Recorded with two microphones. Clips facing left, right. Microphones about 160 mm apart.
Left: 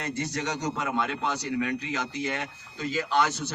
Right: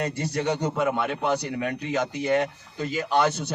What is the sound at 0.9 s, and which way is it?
A man's voice, 10° right (ahead or behind).